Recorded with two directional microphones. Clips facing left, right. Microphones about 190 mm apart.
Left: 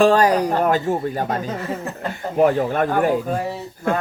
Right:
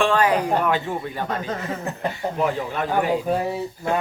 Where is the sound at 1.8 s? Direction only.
15° right (ahead or behind).